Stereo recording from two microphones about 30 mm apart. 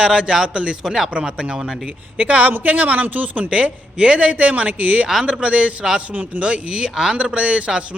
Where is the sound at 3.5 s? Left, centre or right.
Right.